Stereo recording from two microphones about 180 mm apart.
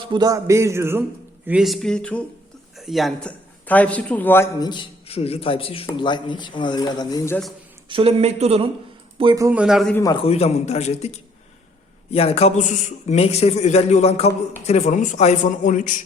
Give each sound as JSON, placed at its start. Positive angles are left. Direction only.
{"t": 0.0, "sound": "a man's voice", "side_deg": -25}
{"t": 1.5, "sound": "a man's voice", "side_deg": -5}
{"t": 4.6, "sound": "a man's voice", "side_deg": 25}
{"t": 7.9, "sound": "speech", "side_deg": -30}
{"t": 9.1, "sound": "speech", "side_deg": -25}
{"t": 9.5, "sound": "speech", "side_deg": -5}
{"t": 9.9, "sound": "a man's voice", "side_deg": 20}
{"t": 10.2, "sound": "a man's voice", "side_deg": 35}